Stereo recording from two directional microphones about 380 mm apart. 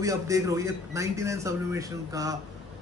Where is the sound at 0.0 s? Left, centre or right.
Centre.